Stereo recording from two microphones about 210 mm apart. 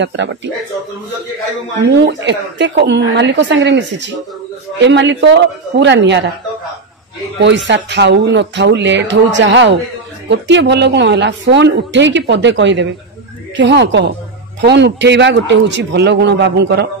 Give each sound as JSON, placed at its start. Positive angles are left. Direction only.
{"t": 0.0, "sound": "a woman's voice", "side_deg": -55}
{"t": 2.2, "sound": "a woman's voice", "side_deg": -55}
{"t": 7.3, "sound": "a woman's voice", "side_deg": -60}